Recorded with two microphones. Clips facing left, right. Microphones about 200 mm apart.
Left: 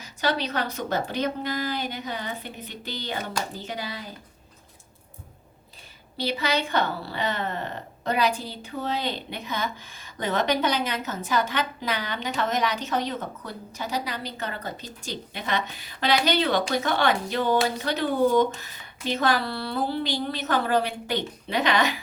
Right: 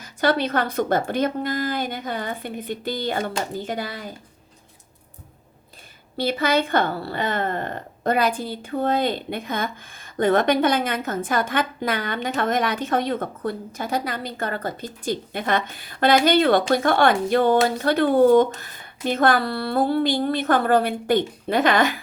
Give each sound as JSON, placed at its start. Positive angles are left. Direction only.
{"t": 0.0, "sound": "a woman's voice", "side_deg": -50}
{"t": 6.1, "sound": "a woman's voice", "side_deg": -50}